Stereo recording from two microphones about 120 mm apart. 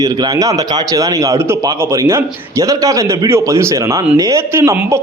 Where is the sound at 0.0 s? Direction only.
30° right (ahead or behind).